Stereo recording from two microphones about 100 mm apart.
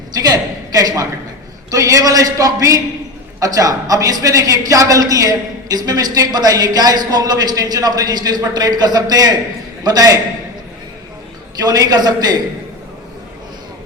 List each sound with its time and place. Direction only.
0.1 s a man's voice: 40° right (ahead or behind)
11.6 s a man's voice: 40° right (ahead or behind)